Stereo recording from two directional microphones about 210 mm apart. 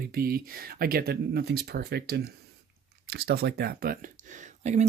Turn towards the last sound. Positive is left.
turn(degrees=-35)  # may be behind; listen again after turning